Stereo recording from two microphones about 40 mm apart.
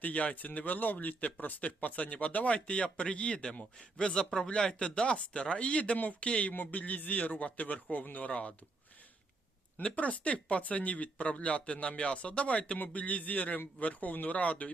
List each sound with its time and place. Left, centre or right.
0.0 s speech: left
6.5 s speech: left
8.3 s speech: left
9.9 s speech: left